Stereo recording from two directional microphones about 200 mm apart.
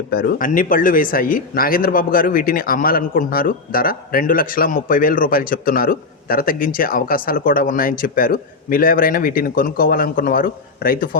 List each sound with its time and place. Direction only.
0.1 s speech: 45° left (ahead or behind)